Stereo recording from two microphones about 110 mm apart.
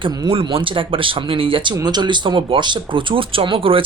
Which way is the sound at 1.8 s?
40° right (ahead or behind).